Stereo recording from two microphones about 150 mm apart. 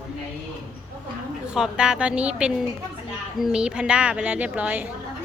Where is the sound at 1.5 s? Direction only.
5° right (ahead or behind).